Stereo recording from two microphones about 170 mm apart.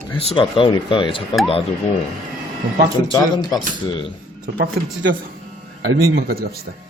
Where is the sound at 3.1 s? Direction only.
25° left (ahead or behind).